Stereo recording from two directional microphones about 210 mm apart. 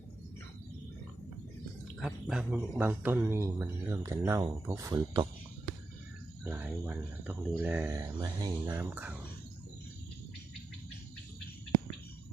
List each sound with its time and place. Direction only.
2.0 s speech: centre (ahead or behind); by 5.2 s 20° right (ahead or behind)
6.5 s speech: 10° right (ahead or behind)
8.6 s speech: 10° right (ahead or behind)